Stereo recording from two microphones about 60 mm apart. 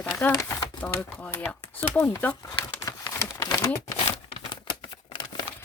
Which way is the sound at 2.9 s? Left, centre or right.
Left.